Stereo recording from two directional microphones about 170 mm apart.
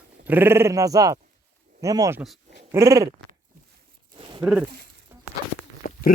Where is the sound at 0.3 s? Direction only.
10° right (ahead or behind).